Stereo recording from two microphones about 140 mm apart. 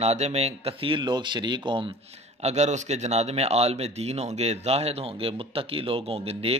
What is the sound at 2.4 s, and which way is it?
Speech, 55° right (ahead or behind).